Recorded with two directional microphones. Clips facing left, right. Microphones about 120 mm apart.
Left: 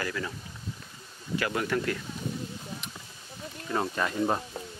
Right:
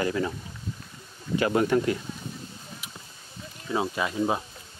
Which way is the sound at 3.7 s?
10° right (ahead or behind).